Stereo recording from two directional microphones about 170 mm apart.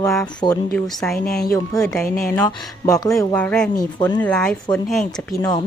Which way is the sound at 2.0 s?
55° left (ahead or behind).